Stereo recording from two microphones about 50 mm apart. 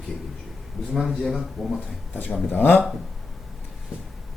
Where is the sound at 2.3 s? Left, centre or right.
Left.